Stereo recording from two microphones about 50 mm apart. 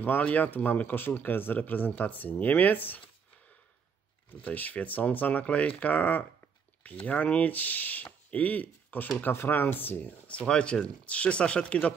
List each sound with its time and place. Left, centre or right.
0.0 s speech: left
4.3 s speech: left
9.3 s speech: left
10.4 s speech: centre